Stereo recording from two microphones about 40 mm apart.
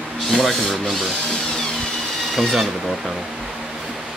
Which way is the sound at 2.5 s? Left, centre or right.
Centre.